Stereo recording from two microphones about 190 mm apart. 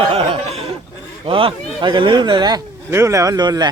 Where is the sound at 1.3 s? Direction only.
30° right (ahead or behind).